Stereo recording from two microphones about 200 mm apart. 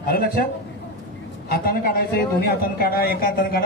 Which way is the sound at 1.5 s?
50° left (ahead or behind).